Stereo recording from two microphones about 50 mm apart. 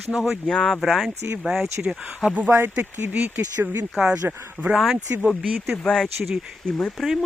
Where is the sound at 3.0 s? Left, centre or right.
Right.